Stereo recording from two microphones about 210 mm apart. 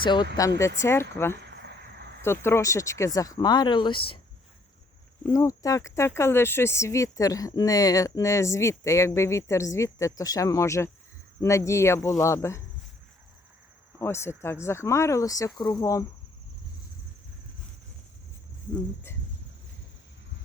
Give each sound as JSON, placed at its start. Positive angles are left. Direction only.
{"t": 0.0, "sound": "speech", "side_deg": 20}
{"t": 1.4, "sound": "cricket", "side_deg": -55}
{"t": 2.2, "sound": "speech", "side_deg": 10}
{"t": 5.2, "sound": "speech", "side_deg": 15}
{"t": 14.0, "sound": "speech", "side_deg": 10}